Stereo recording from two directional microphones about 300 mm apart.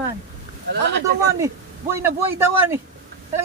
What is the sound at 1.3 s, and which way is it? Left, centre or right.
Speech, centre.